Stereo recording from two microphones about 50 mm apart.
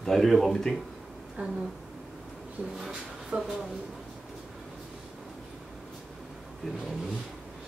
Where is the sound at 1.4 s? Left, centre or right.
Right.